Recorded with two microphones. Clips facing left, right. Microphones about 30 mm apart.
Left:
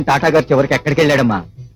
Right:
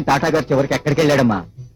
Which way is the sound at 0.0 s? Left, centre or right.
Left.